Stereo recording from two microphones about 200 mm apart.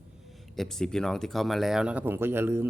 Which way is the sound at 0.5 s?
Centre (ahead or behind).